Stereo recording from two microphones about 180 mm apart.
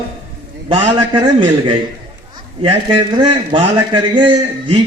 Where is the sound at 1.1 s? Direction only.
25° right (ahead or behind).